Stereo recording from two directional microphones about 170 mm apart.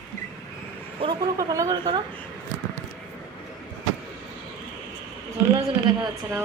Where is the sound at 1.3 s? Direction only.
20° right (ahead or behind).